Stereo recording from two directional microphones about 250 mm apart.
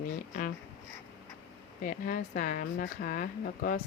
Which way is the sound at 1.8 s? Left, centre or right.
Left.